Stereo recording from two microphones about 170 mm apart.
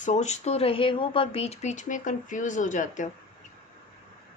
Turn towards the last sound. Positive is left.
turn(degrees=45)  # may be behind; listen again after turning